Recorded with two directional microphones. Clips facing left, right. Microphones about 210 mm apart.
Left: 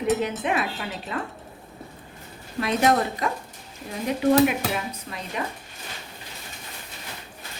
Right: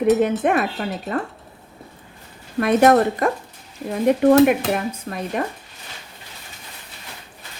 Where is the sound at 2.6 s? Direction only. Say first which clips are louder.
Right 7 dB; 55° right (ahead or behind).